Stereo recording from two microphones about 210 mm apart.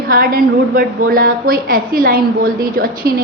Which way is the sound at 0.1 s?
45° right (ahead or behind).